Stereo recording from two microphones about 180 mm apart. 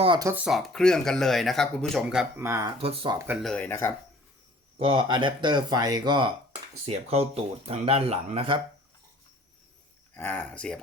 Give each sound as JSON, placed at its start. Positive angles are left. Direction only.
{"t": 0.0, "sound": "speech", "side_deg": -25}
{"t": 0.3, "sound": "speech", "side_deg": -5}
{"t": 2.4, "sound": "speech", "side_deg": -15}
{"t": 2.7, "sound": "speech", "side_deg": -35}
{"t": 3.4, "sound": "speech", "side_deg": 5}
{"t": 4.8, "sound": "speech", "side_deg": -25}
{"t": 6.8, "sound": "speech", "side_deg": -35}
{"t": 10.2, "sound": "speech", "side_deg": 10}